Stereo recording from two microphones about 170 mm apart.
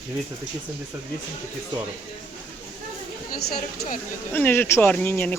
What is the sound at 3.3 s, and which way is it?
Speech, 60° left (ahead or behind).